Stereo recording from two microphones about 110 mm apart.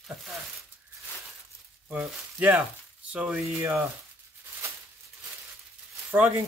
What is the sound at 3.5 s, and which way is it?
Rub, 20° right (ahead or behind).